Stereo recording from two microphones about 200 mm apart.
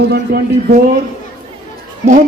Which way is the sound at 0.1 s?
50° right (ahead or behind).